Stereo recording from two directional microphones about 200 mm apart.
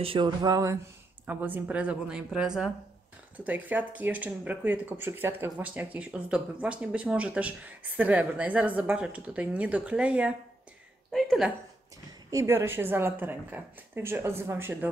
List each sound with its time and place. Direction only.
0.0 s a woman's voice: 25° right (ahead or behind); by 11.5 s centre (ahead or behind)
12.3 s speech: 15° right (ahead or behind)